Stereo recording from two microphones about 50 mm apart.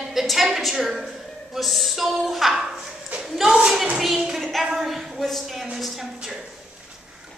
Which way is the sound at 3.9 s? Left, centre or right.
Centre.